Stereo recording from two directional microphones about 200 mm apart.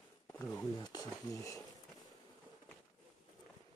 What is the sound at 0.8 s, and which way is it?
Speech, 20° left (ahead or behind).